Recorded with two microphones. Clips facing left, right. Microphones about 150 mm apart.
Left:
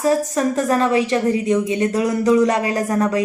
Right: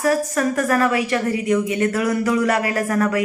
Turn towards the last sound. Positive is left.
turn(degrees=20)  # may be behind; listen again after turning